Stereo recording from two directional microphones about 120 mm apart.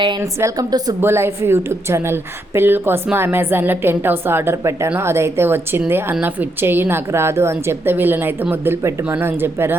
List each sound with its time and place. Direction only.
0.2 s a woman's voice: 25° right (ahead or behind)
1.0 s a woman's voice: 20° right (ahead or behind)